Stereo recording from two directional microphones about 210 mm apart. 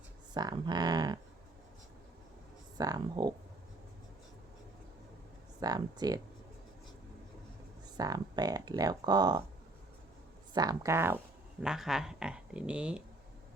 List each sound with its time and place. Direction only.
0.3 s speech: 20° right (ahead or behind)
2.7 s speech: 20° right (ahead or behind)
5.5 s speech: 20° right (ahead or behind)
7.9 s speech: 20° right (ahead or behind)
10.5 s speech: 20° right (ahead or behind)